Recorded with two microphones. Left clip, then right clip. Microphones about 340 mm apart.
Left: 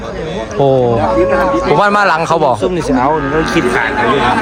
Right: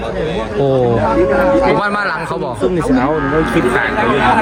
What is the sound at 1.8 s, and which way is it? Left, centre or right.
Speech, centre.